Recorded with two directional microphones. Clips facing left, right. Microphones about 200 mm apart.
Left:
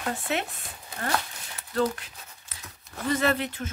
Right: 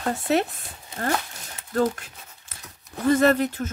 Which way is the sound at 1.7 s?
45° right (ahead or behind).